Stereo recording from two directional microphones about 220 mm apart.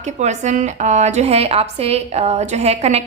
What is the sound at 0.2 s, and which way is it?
A woman's voice, 30° right (ahead or behind).